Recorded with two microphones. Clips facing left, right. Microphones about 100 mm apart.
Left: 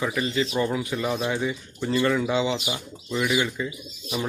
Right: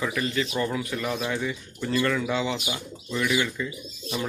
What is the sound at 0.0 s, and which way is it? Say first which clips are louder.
Speech: left 2 dB; 15° left (ahead or behind).